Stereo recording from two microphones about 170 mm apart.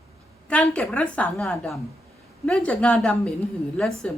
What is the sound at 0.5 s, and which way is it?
A woman's voice, 5° left (ahead or behind).